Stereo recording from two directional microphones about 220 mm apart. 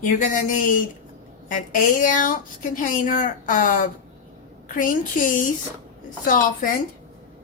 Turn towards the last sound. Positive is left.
turn(degrees=40)  # may be behind; listen again after turning